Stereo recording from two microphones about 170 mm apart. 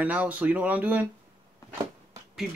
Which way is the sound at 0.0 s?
10° right (ahead or behind).